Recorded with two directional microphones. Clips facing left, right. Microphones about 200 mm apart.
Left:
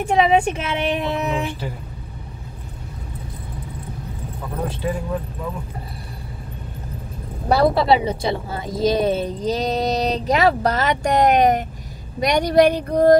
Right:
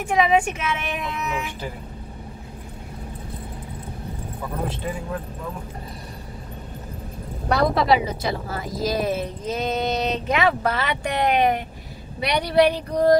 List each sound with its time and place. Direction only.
0.0 s a woman's voice: 30° left (ahead or behind)
7.4 s a woman's voice: 30° left (ahead or behind); by 13.2 s 50° left (ahead or behind)